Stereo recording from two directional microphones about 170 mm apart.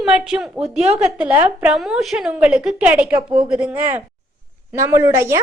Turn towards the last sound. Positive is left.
turn(degrees=-15)  # may be behind; listen again after turning